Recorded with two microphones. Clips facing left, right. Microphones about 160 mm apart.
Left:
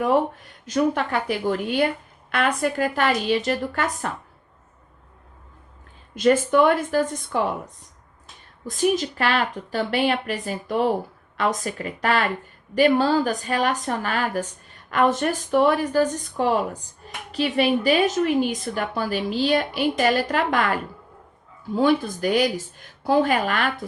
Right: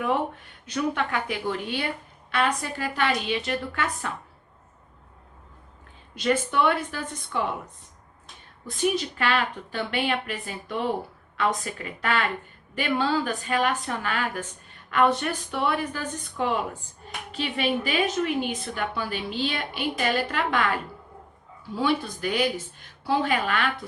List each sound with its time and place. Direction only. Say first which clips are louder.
0.7 s speech: left 5 dB; 40° left (ahead or behind)
6.1 s speech: left 7 dB; 45° left (ahead or behind)
21.8 s speech: left 6 dB; 45° left (ahead or behind)